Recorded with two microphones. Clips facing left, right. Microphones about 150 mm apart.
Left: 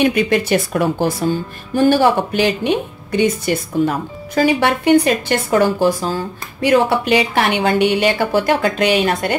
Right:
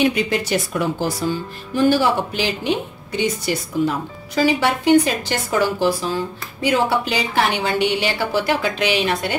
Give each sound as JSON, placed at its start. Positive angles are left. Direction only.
{"t": 0.0, "sound": "a woman's voice", "side_deg": 55}
{"t": 6.7, "sound": "a woman's voice", "side_deg": 65}